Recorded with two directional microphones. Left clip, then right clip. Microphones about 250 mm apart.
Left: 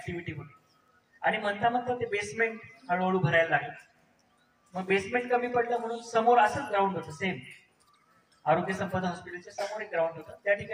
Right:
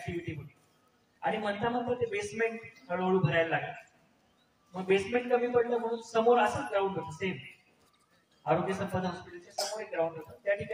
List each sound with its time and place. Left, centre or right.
1.2 s a man's voice: left
4.7 s a man's voice: left
8.7 s a man's voice: left